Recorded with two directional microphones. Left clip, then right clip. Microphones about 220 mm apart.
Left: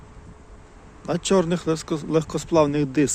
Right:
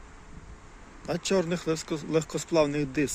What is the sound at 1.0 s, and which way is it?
Speech, 10° left (ahead or behind).